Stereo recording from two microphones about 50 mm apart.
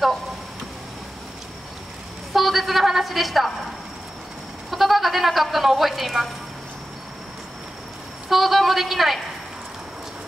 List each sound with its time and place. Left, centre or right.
2.3 s a sound: centre
4.6 s speech: centre
8.3 s a man's voice: centre